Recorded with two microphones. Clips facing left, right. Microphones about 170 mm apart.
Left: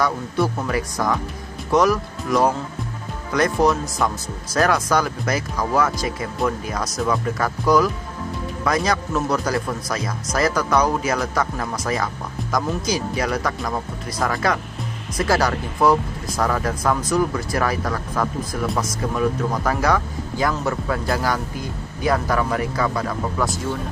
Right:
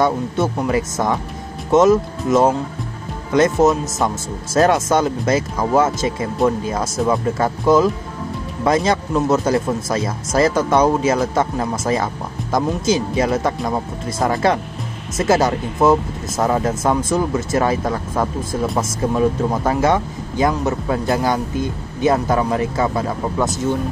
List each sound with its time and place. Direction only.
0.0 s speech: 25° right (ahead or behind)